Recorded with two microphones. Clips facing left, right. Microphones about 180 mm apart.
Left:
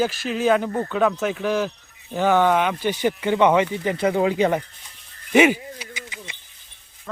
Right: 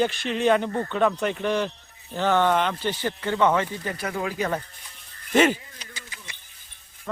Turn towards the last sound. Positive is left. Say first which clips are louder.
# left 6 dB
turn(degrees=15)  # may be behind; listen again after turning